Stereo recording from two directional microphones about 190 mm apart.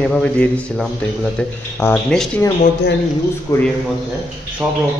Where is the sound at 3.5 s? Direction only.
15° left (ahead or behind).